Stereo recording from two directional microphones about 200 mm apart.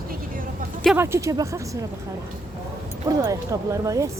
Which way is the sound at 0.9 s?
15° right (ahead or behind).